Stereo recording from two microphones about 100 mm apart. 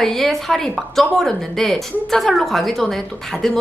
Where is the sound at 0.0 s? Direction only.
5° left (ahead or behind).